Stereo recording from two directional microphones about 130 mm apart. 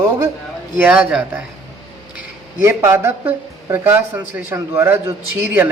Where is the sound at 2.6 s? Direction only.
20° right (ahead or behind).